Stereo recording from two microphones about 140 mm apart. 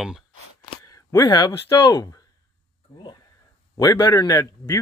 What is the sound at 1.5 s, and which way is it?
Speech, 25° left (ahead or behind).